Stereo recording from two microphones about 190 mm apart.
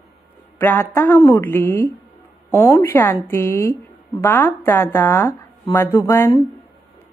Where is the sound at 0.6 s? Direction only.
10° left (ahead or behind).